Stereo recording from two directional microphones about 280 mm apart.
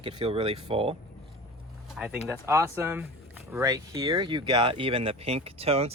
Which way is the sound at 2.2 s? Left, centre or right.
Centre.